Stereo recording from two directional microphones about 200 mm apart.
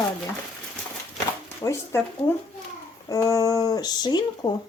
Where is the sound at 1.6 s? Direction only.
15° left (ahead or behind).